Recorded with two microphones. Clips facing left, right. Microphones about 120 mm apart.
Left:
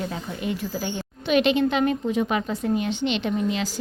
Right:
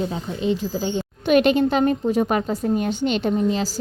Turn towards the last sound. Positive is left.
turn(degrees=-35)  # may be behind; listen again after turning